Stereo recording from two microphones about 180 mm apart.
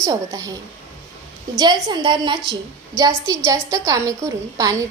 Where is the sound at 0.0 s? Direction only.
20° right (ahead or behind).